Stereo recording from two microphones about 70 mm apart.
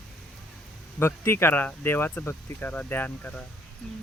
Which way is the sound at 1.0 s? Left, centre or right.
Left.